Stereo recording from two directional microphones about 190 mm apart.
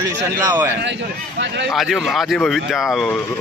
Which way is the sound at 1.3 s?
65° right (ahead or behind).